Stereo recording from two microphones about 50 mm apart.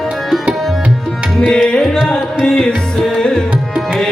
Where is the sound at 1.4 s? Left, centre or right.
Centre.